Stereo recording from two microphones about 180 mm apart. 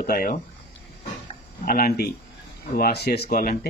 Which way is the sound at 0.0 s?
55° left (ahead or behind).